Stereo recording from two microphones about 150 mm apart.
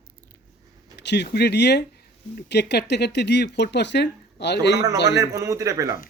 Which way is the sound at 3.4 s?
90° left.